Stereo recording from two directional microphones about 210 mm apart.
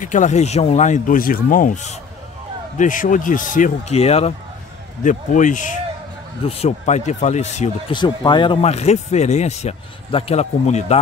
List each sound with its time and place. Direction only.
0.0 s speech: 35° left (ahead or behind)
7.9 s speech: 20° left (ahead or behind)